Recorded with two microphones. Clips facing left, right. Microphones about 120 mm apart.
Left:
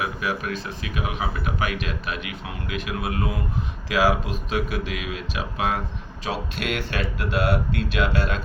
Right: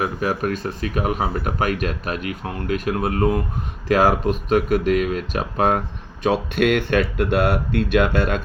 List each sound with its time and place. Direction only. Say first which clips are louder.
0.0 s speech: right 5 dB; 45° right (ahead or behind)